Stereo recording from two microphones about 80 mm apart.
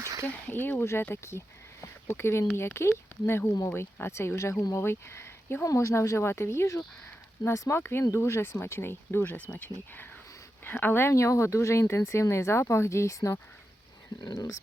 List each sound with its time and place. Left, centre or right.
0.3 s speech: left
1.1 s a sound: left
2.6 s speech: left
14.2 s speech: left